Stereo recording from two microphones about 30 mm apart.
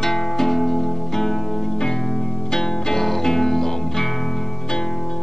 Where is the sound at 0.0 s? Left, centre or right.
Centre.